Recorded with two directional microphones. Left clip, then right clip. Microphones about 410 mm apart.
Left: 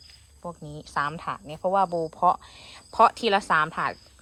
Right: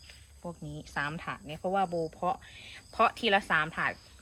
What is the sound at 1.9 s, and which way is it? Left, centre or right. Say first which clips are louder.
Speech: left 5 dB; left.